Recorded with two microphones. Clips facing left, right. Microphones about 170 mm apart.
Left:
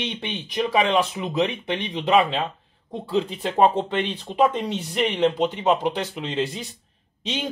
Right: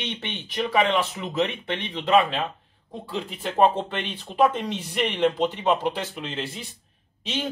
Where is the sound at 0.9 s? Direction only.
20° left (ahead or behind).